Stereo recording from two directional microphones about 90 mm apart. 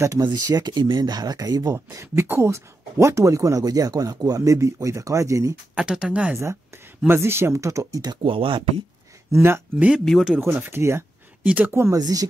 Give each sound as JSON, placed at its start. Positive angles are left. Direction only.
{"t": 0.2, "sound": "speech", "side_deg": -35}
{"t": 0.6, "sound": "speech", "side_deg": -55}
{"t": 5.8, "sound": "speech", "side_deg": -10}
{"t": 6.3, "sound": "speech", "side_deg": -30}
{"t": 8.2, "sound": "speech", "side_deg": -80}
{"t": 9.3, "sound": "speech", "side_deg": -25}
{"t": 9.9, "sound": "speech", "side_deg": 0}
{"t": 10.5, "sound": "speech", "side_deg": -25}
{"t": 11.4, "sound": "speech", "side_deg": -20}
{"t": 12.0, "sound": "speech", "side_deg": -45}